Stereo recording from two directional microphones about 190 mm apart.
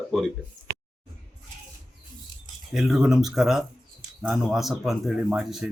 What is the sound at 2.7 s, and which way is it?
A man's voice, centre (ahead or behind).